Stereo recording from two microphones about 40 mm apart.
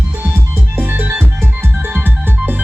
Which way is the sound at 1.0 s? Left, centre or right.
Right.